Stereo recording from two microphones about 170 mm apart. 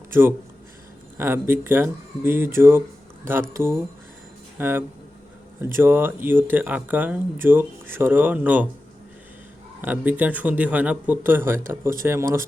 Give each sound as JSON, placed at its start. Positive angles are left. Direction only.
{"t": 0.1, "sound": "speech", "side_deg": -15}
{"t": 9.8, "sound": "speech", "side_deg": -10}